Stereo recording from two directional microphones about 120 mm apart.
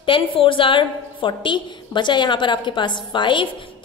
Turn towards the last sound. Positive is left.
turn(degrees=40)  # may be behind; listen again after turning